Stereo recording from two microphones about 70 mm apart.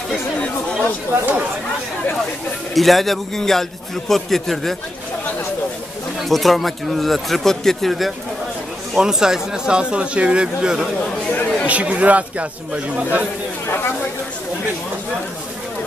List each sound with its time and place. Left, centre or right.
1.2 s a man's voice: right
2.7 s a man's voice: centre
6.1 s a man's voice: centre
11.3 s chatter: left
11.6 s a man's voice: centre